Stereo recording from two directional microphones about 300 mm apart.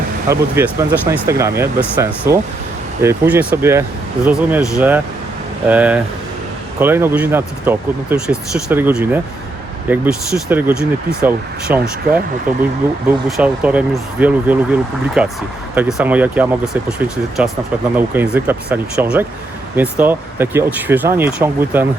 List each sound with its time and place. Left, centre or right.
0.3 s speech: centre